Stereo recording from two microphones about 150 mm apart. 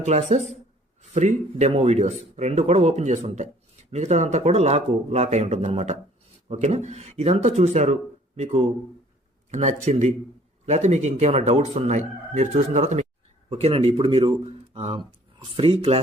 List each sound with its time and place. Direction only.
0.0 s speech: 50° right (ahead or behind)